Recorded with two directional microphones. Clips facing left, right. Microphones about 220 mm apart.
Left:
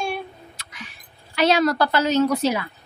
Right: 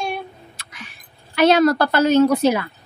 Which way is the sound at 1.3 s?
50° right (ahead or behind).